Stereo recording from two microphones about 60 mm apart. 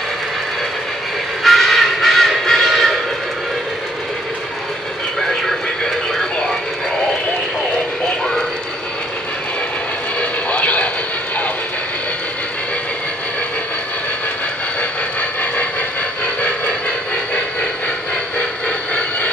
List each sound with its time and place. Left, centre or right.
1.4 s train: centre
10.5 s vehicle: left